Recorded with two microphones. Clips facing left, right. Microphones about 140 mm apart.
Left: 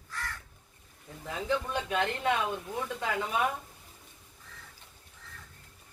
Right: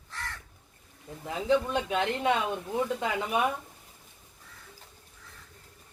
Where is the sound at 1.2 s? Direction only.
20° right (ahead or behind).